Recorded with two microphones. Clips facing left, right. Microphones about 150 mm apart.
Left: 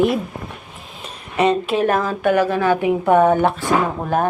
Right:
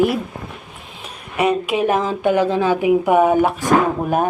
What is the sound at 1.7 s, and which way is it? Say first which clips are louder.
Speech: even; 15° right (ahead or behind).